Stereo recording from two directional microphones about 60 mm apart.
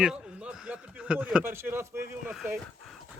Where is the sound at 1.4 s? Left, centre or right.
Right.